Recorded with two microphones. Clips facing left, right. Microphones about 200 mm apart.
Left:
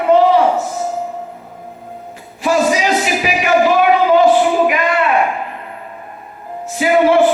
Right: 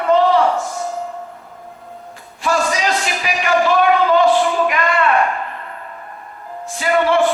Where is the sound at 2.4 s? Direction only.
15° left (ahead or behind).